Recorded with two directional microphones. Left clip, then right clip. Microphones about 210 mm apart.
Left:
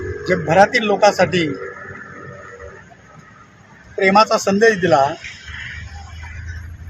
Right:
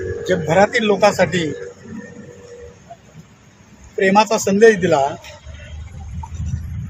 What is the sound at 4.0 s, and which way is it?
A man's voice, 5° left (ahead or behind).